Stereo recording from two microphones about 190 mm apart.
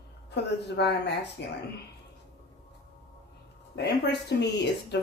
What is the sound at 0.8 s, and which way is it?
Speech, 65° left (ahead or behind).